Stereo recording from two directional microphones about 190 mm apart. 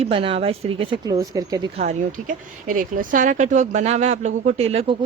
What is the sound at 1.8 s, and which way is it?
Speech, 40° right (ahead or behind).